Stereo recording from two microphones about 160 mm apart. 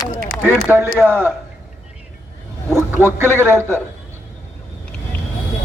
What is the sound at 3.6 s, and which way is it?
Speech, 15° left (ahead or behind).